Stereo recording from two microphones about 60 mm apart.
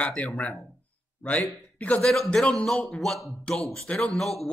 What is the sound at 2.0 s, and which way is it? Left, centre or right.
A man's voice, centre.